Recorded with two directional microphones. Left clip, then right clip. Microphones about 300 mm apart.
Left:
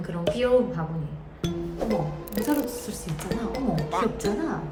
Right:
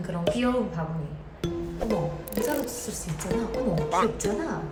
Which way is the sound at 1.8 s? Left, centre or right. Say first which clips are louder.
Left 1 dB; centre.